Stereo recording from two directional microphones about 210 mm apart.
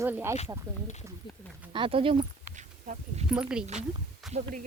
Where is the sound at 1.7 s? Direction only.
25° right (ahead or behind).